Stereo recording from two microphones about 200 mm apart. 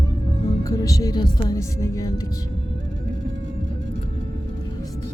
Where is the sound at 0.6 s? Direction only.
15° left (ahead or behind).